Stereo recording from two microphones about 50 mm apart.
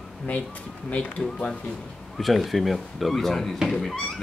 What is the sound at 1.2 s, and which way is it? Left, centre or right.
Speech, centre.